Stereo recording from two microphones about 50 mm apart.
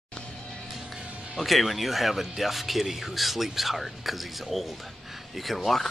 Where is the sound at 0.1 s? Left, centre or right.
Centre.